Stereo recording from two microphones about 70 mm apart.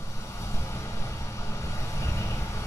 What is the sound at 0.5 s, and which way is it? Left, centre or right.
Vehicle, left.